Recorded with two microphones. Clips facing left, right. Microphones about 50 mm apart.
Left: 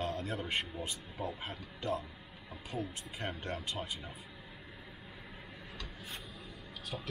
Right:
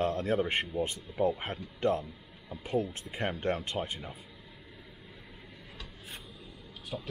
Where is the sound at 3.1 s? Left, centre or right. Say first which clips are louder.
Right 11 dB; right.